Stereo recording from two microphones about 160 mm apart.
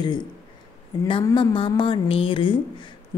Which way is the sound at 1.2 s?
25° left (ahead or behind).